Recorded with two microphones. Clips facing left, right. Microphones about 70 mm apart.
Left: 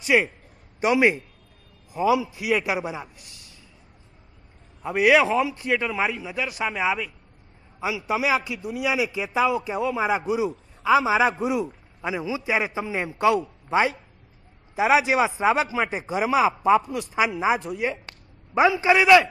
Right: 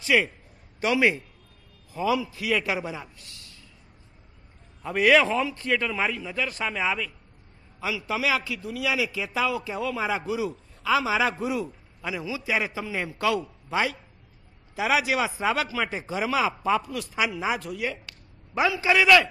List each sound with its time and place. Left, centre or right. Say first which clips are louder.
0.0 s a man's voice: left 2 dB; left
4.8 s a man's voice: left 2 dB; centre